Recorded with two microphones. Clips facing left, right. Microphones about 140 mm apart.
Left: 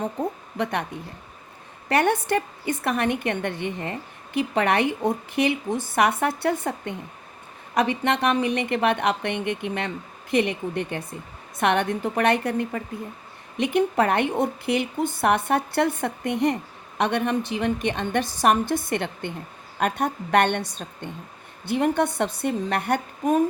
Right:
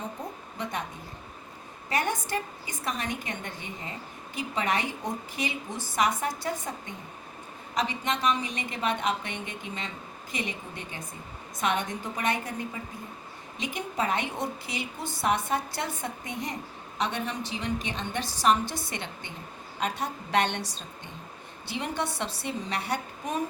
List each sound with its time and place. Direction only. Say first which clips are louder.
0.0 s speech: left 9 dB; 65° left (ahead or behind)
1.9 s a woman's voice: left 8 dB; 65° left (ahead or behind)